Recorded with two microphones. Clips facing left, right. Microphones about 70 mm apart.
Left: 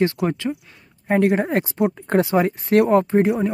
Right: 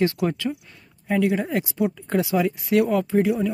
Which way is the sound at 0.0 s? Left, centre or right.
Left.